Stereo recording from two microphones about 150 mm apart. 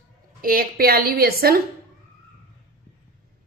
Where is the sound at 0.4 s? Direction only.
75° right (ahead or behind); by 1.5 s 90° right.